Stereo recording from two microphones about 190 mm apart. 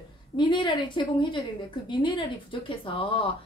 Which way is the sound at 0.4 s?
25° left (ahead or behind).